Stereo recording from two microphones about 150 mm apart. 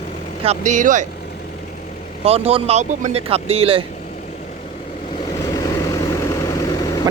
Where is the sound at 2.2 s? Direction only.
40° right (ahead or behind).